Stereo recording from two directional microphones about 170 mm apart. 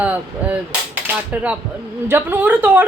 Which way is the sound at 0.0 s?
10° right (ahead or behind).